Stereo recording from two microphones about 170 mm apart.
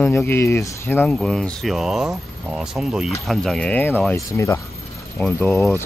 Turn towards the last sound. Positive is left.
turn(degrees=5)  # may be behind; listen again after turning